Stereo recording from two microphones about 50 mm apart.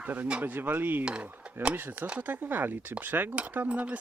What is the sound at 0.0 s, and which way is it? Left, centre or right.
Speech, right.